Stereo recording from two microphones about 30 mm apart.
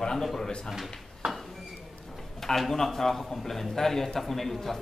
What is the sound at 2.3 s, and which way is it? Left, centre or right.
A man's voice, centre.